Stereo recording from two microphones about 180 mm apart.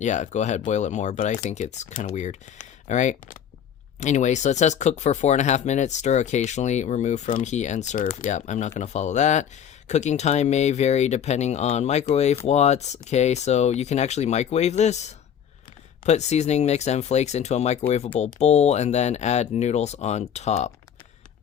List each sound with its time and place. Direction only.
0.0 s speech: 40° left (ahead or behind)
16.0 s speech: 40° left (ahead or behind)